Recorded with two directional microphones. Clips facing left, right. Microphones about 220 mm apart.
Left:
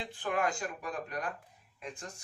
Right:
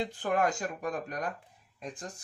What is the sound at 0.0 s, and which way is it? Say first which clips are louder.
Speech: right 5 dB; 40° right (ahead or behind).